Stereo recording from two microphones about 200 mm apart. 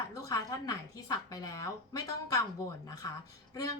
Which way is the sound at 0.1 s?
15° left (ahead or behind).